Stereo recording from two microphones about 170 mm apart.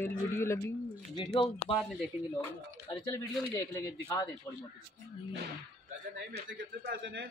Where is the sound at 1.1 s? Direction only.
30° left (ahead or behind).